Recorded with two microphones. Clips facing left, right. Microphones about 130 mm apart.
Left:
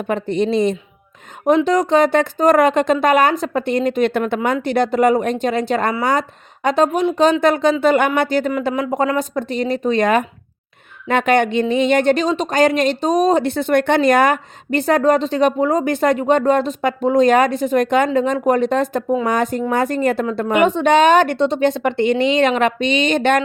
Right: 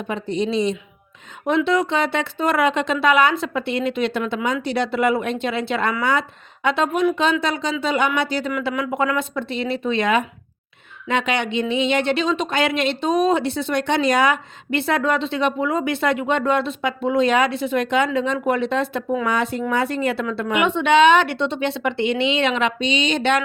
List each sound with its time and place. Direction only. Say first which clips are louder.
0.1 s a woman's voice: left 5 dB; 55° left (ahead or behind)
1.5 s a woman's voice: left 4 dB; 40° left (ahead or behind)
8.5 s a woman's voice: left 4 dB; 35° left (ahead or behind)
19.0 s speech: left 4 dB; 30° left (ahead or behind)
19.3 s speech: left 3 dB; 45° left (ahead or behind)